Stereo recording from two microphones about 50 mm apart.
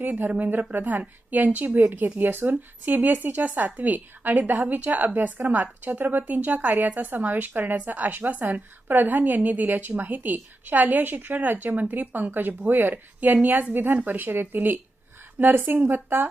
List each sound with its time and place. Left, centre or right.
0.0 s a woman's voice: right